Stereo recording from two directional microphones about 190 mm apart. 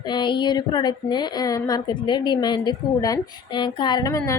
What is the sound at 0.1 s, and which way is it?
A woman's voice, 25° left (ahead or behind).